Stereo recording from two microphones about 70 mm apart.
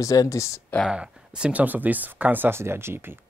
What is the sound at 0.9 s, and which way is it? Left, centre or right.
Speech, centre.